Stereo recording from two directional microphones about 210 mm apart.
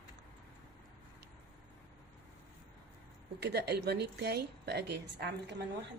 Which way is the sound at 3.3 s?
50° right (ahead or behind).